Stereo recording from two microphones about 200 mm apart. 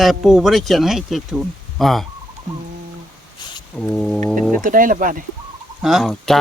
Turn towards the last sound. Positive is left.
turn(degrees=0)  # may be behind; listen again after turning